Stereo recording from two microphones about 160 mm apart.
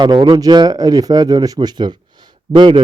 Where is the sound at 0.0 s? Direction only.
30° right (ahead or behind).